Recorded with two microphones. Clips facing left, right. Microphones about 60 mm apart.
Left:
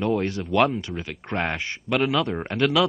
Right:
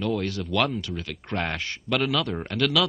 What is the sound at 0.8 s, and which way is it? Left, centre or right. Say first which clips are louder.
Speech: left 1 dB; left.